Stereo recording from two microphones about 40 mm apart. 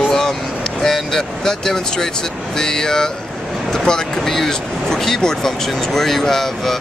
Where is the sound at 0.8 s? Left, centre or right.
Centre.